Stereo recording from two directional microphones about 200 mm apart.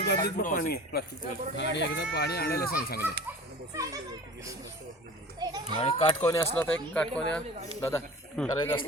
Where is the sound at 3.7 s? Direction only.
15° right (ahead or behind).